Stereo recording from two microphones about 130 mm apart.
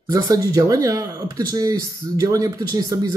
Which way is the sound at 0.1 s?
25° right (ahead or behind).